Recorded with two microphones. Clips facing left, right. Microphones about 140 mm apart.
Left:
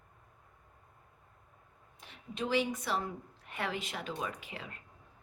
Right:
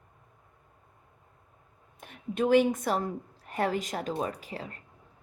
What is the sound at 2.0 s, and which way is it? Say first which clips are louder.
A woman's voice: right 9 dB; 50° right (ahead or behind).